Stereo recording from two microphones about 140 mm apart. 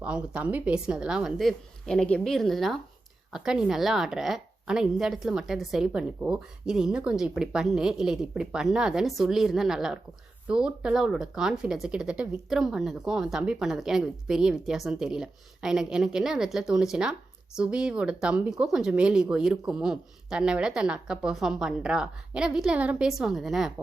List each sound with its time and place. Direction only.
0.0 s a woman's voice: 5° right (ahead or behind)